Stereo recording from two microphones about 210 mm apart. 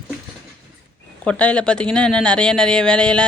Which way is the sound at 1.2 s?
5° left (ahead or behind).